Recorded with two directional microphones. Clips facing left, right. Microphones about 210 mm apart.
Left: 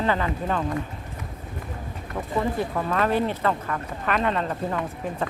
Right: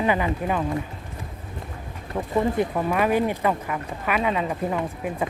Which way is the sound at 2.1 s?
20° right (ahead or behind).